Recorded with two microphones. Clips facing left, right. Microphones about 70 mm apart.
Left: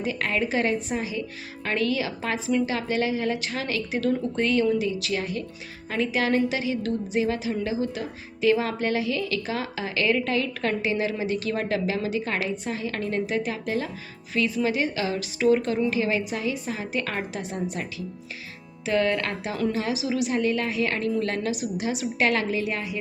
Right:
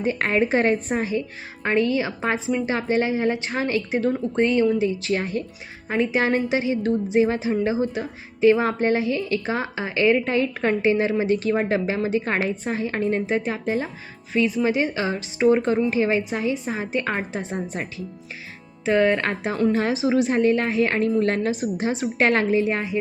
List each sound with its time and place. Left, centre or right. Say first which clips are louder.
0.0 s a woman's voice: right 5 dB; right
1.6 s a woman's voice: right 5 dB; right